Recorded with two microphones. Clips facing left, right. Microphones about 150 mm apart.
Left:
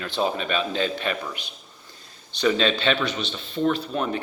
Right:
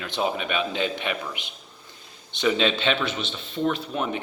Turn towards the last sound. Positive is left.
turn(degrees=-10)  # may be behind; listen again after turning